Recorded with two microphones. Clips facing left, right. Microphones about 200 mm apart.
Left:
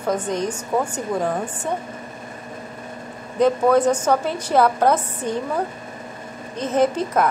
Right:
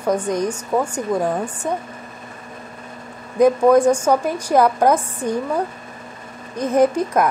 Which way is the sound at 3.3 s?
10° right (ahead or behind).